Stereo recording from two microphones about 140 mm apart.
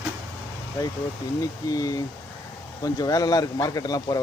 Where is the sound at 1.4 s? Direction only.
25° left (ahead or behind).